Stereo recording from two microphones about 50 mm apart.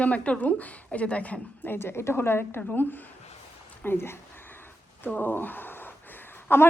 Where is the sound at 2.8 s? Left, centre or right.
Left.